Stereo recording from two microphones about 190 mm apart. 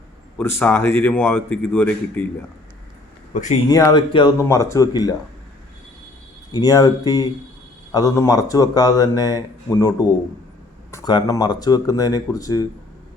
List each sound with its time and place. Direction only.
0.3 s speech: 10° left (ahead or behind)
3.3 s speech: 40° left (ahead or behind)
3.7 s speech: 20° left (ahead or behind)
6.5 s a man's voice: 20° left (ahead or behind)